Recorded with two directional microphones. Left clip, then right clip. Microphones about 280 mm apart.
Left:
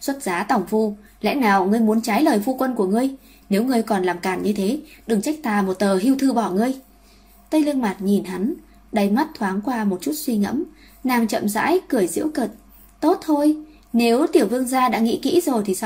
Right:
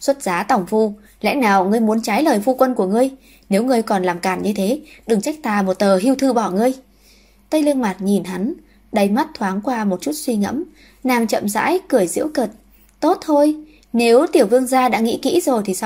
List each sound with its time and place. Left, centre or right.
0.0 s a woman's voice: right